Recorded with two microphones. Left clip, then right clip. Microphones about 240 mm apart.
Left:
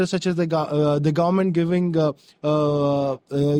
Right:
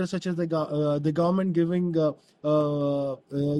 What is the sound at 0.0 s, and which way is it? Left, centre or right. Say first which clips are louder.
A man's voice: left 7 dB; left.